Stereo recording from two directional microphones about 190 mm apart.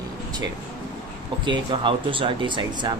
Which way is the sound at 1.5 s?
25° right (ahead or behind).